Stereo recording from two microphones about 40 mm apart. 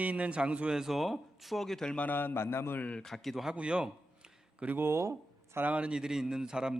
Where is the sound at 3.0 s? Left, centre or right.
Centre.